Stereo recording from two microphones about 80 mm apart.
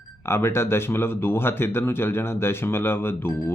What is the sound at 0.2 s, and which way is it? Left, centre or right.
Speech, left.